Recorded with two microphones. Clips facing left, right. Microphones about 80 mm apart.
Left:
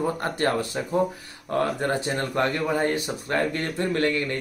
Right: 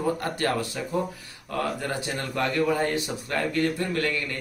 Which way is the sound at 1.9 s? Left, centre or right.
Left.